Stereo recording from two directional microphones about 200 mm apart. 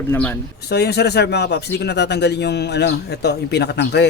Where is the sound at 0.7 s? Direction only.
55° left (ahead or behind).